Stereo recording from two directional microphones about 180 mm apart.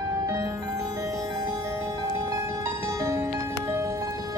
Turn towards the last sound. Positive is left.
turn(degrees=-20)  # may be behind; listen again after turning